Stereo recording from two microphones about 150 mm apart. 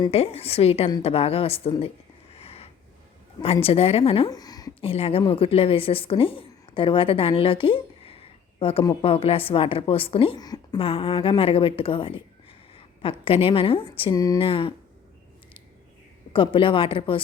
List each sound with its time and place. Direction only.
0.1 s a woman's voice: 40° left (ahead or behind)
2.3 s a sound: 40° left (ahead or behind)
3.4 s a woman's voice: 40° left (ahead or behind)
4.3 s a sound: 25° left (ahead or behind)
4.8 s a woman's voice: 40° left (ahead or behind)
16.3 s a woman's voice: 35° left (ahead or behind)